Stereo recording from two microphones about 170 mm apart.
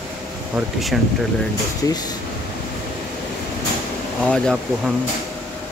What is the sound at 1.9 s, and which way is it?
Speech, 25° left (ahead or behind).